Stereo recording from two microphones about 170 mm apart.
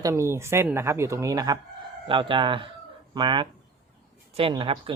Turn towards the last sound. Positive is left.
turn(degrees=-30)  # may be behind; listen again after turning